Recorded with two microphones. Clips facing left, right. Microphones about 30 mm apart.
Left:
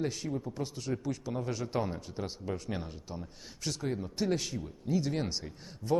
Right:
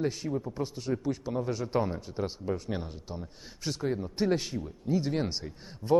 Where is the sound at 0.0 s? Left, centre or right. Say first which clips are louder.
Right 3 dB; centre.